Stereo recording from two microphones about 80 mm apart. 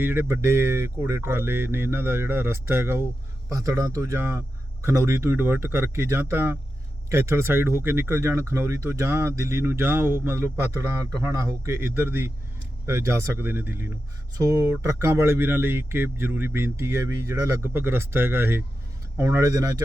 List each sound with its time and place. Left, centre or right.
0.0 s speech: right
3.5 s speech: right
14.3 s speech: right
19.1 s speech: right